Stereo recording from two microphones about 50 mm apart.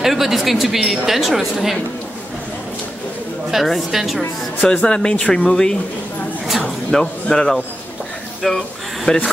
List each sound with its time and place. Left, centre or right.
0.0 s a woman's voice: centre
3.5 s a woman's voice: centre
4.8 s speech: centre
6.9 s speech: centre